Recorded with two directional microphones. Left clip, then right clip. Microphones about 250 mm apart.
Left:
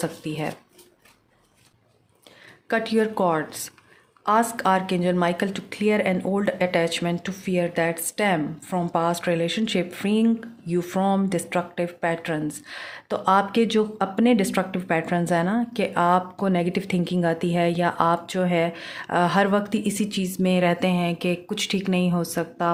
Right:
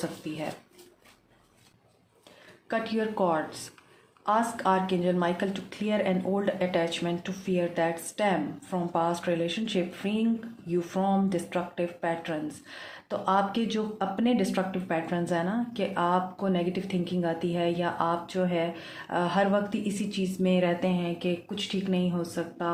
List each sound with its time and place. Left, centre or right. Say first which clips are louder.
0.2 s speech: left 6 dB; left
2.6 s speech: left 7 dB; left